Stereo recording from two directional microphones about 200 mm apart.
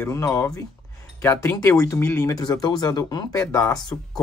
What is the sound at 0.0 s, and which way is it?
Speech, 15° left (ahead or behind).